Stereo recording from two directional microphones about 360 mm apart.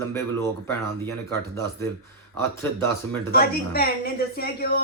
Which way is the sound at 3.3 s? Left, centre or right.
Left.